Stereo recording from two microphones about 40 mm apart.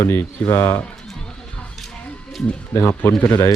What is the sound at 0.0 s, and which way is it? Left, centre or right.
Speech, left.